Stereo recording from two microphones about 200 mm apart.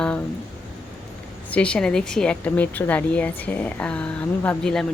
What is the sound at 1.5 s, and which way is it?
Speech, 5° left (ahead or behind).